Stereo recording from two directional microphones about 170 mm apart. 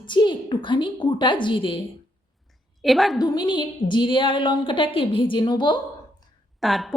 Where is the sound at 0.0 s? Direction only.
25° left (ahead or behind).